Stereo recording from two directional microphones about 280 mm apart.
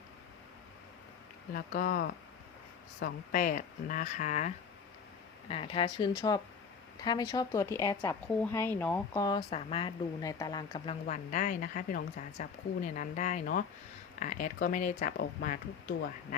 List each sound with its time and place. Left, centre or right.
1.5 s a woman's voice: left
11.0 s a woman's voice: left